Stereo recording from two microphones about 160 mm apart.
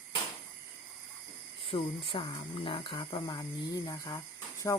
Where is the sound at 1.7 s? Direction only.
35° left (ahead or behind).